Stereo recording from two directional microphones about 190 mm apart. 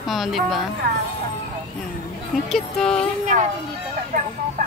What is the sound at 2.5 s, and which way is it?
Speech, 5° left (ahead or behind).